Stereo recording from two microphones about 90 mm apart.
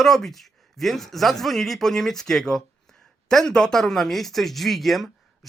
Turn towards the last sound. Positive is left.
turn(degrees=0)  # may be behind; listen again after turning